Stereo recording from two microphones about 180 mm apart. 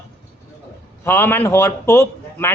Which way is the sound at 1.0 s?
10° left (ahead or behind).